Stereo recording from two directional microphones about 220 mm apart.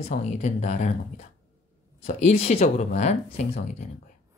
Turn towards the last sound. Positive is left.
turn(degrees=30)  # may be behind; listen again after turning